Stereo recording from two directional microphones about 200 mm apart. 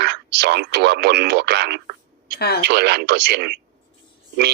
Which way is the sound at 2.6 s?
55° right (ahead or behind).